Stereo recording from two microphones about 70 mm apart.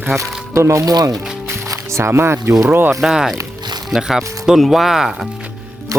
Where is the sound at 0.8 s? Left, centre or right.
Right.